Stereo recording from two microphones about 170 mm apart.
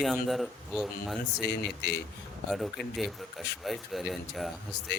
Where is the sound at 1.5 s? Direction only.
80° left.